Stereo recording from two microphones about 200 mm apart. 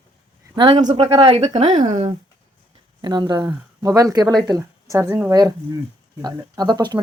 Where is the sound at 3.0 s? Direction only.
20° right (ahead or behind).